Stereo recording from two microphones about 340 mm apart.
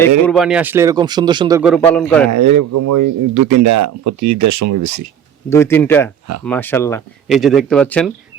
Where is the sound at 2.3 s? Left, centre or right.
Right.